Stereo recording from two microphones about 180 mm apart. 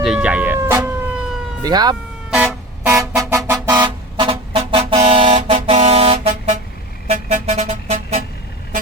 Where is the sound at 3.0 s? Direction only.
20° right (ahead or behind); by 8.2 s 40° right (ahead or behind).